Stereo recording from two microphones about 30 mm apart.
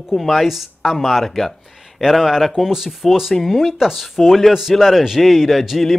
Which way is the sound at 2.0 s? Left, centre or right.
Centre.